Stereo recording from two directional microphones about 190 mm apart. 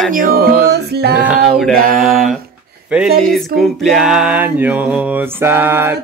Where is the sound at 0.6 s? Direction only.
60° right (ahead or behind).